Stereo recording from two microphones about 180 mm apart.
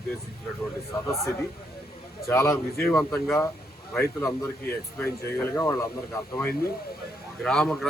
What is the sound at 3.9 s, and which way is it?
Speech, 15° left (ahead or behind).